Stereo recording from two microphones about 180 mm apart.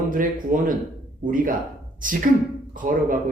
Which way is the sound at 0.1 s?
50° right (ahead or behind).